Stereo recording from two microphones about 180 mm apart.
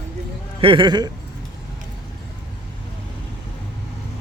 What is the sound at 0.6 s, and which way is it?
Speech, 30° right (ahead or behind).